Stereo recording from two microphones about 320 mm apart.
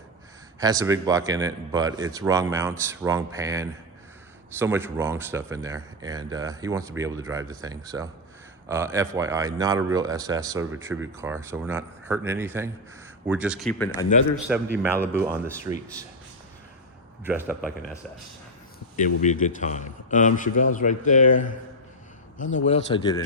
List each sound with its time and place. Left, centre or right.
0.6 s speech: centre
14.4 s speech: centre
14.9 s speech: centre
15.2 s speech: centre
17.2 s speech: centre
19.2 s a man's voice: left
22.5 s a man's voice: left